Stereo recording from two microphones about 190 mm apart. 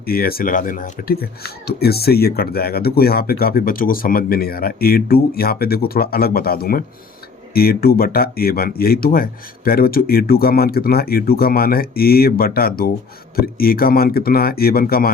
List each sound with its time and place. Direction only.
0.0 s speech: 50° left (ahead or behind)